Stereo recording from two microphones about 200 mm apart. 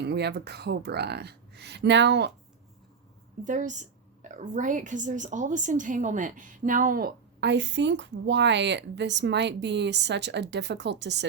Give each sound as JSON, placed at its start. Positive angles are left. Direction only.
{"t": 0.0, "sound": "a woman's voice", "side_deg": -55}
{"t": 3.4, "sound": "a woman's voice", "side_deg": -40}